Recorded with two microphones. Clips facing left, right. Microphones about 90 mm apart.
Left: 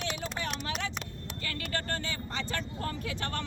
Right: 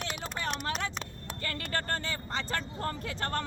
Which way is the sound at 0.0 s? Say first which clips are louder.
Even; 40° right (ahead or behind).